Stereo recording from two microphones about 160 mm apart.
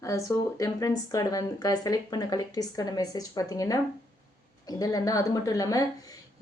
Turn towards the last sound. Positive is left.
turn(degrees=20)  # may be behind; listen again after turning